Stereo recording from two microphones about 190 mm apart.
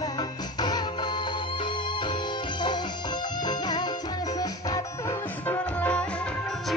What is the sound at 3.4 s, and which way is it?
Music, 20° left (ahead or behind).